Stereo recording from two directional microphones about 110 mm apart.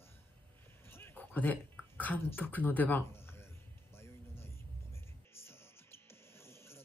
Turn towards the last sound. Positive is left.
turn(degrees=25)  # may be behind; listen again after turning